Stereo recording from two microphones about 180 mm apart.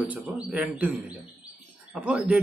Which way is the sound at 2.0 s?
5° right (ahead or behind).